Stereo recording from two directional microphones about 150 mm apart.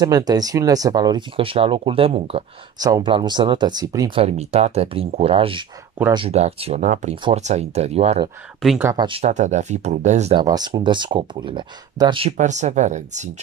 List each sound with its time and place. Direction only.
0.0 s speech: 25° right (ahead or behind)
2.8 s speech: 30° right (ahead or behind)
4.1 s speech: 40° right (ahead or behind)
8.9 s speech: 30° right (ahead or behind)
9.2 s speech: 50° right (ahead or behind)
10.4 s speech: 25° right (ahead or behind)
12.4 s speech: 50° right (ahead or behind)